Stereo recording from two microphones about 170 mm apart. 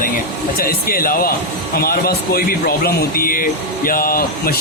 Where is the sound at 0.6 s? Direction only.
60° left (ahead or behind).